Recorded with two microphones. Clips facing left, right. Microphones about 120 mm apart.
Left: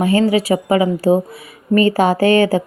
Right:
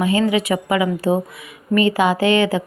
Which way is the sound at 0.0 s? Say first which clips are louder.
Left 3 dB; 40° left (ahead or behind).